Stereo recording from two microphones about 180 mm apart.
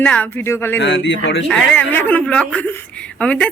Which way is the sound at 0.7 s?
85° left.